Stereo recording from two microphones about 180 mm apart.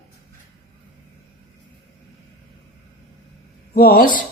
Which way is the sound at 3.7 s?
60° left (ahead or behind).